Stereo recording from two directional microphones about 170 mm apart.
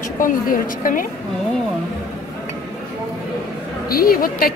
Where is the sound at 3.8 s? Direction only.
60° left (ahead or behind).